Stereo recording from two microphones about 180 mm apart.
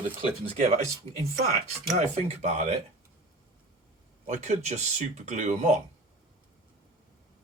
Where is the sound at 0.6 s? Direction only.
40° right (ahead or behind).